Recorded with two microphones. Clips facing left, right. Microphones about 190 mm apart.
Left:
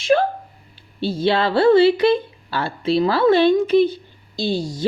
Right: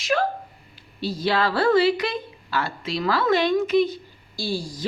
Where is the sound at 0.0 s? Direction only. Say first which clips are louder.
Left 6 dB; 30° left (ahead or behind).